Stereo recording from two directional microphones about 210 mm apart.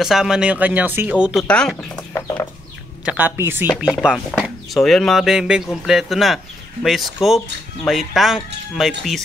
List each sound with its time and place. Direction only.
0.0 s speech: centre (ahead or behind)
3.1 s speech: 10° right (ahead or behind)